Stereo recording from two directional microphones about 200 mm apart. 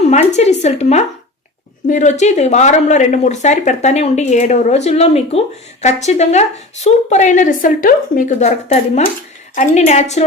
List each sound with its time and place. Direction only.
0.0 s speech: 35° left (ahead or behind)